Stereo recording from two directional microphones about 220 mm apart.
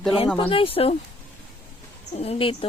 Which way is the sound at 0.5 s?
25° left (ahead or behind).